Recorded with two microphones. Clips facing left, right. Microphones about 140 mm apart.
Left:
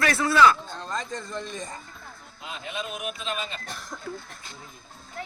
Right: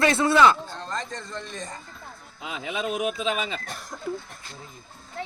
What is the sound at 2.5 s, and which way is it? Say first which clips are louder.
Speech: right 6 dB; 90° right.